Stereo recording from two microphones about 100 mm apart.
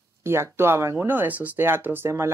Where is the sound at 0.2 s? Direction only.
25° right (ahead or behind).